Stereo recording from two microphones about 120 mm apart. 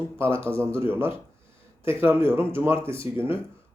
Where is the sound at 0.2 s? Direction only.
20° right (ahead or behind).